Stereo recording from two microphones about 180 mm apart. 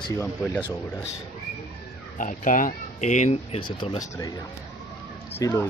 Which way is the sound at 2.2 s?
45° left (ahead or behind).